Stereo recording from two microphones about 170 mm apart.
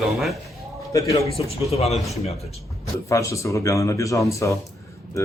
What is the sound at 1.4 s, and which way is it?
Speech, 35° left (ahead or behind).